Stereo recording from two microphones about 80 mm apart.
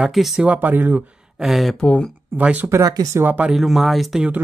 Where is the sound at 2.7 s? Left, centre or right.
Right.